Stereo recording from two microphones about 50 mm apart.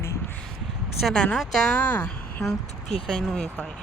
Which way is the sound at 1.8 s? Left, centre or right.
Left.